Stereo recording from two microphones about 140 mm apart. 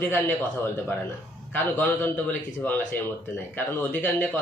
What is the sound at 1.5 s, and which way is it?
A man's voice, 15° left (ahead or behind).